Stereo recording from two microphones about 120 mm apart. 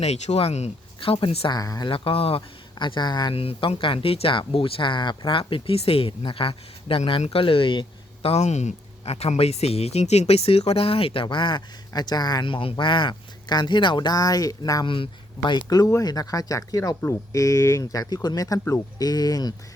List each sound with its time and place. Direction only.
0.0 s speech: 60° left (ahead or behind)
0.9 s a man's voice: 45° left (ahead or behind)
1.5 s speech: 30° left (ahead or behind)
1.9 s speech: 50° left (ahead or behind)
3.3 s a man's voice: 50° left (ahead or behind); by 19.5 s 35° left (ahead or behind)